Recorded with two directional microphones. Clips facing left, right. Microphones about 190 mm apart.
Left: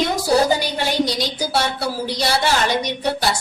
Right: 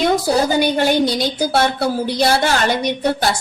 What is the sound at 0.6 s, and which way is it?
A woman's voice, 55° right (ahead or behind).